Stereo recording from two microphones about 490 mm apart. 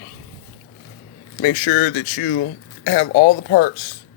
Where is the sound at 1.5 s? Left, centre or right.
Left.